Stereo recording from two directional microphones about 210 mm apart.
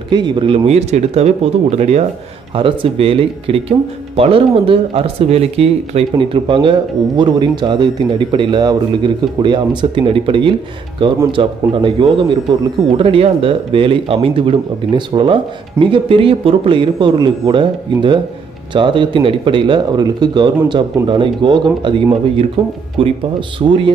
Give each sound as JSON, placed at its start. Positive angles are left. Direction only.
{"t": 0.1, "sound": "speech", "side_deg": -20}
{"t": 23.6, "sound": "speech", "side_deg": -20}